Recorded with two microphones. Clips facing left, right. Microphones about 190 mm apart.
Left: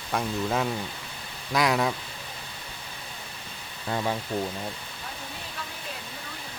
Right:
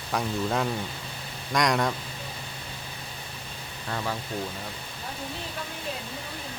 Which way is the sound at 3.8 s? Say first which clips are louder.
Left 4 dB; 20° left (ahead or behind).